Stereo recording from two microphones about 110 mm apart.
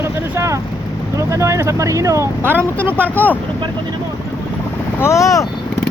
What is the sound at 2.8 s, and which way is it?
Speech, 15° left (ahead or behind).